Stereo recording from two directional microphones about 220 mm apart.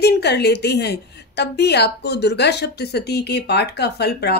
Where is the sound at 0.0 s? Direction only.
50° left (ahead or behind).